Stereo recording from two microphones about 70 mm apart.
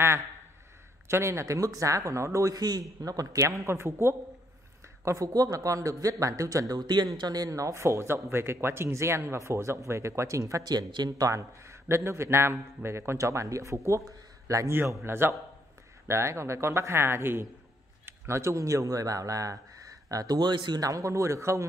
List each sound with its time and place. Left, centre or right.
1.0 s a man's voice: right
5.0 s a man's voice: right
6.7 s speech: right
7.2 s speech: right
10.7 s a man's voice: right
15.0 s speech: right
20.9 s a man's voice: right